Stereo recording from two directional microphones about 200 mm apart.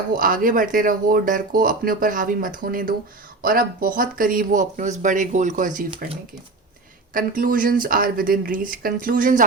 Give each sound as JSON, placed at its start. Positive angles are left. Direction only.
{"t": 0.1, "sound": "speech", "side_deg": -45}